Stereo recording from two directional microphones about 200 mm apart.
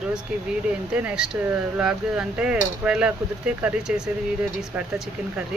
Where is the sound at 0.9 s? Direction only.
5° right (ahead or behind).